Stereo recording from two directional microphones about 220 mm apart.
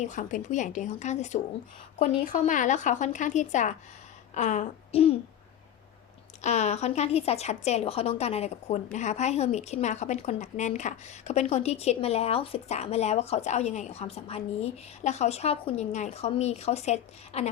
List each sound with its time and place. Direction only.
0.0 s speech: 35° left (ahead or behind)
6.4 s a woman's voice: 30° left (ahead or behind)